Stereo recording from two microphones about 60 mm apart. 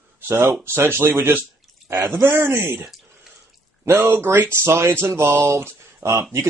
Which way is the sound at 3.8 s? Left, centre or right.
Right.